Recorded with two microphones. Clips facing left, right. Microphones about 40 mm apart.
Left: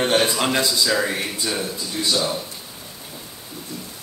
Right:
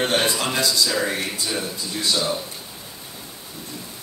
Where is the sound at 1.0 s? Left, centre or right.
Centre.